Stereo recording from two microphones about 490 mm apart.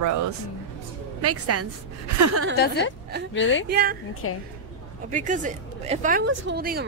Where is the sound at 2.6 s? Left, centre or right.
Centre.